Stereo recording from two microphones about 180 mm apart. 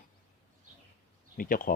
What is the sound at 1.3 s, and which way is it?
Speech, 50° left (ahead or behind).